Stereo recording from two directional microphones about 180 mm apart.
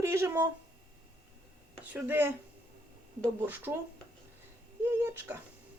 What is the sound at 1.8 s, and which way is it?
Speech, 10° right (ahead or behind).